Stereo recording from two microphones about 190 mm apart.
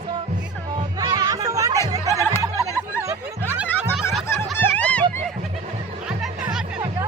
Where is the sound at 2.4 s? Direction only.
20° right (ahead or behind).